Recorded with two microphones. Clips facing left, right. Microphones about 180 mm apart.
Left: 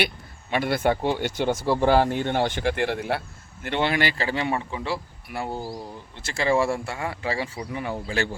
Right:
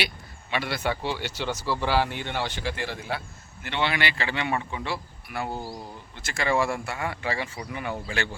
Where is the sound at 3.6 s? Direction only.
45° left (ahead or behind).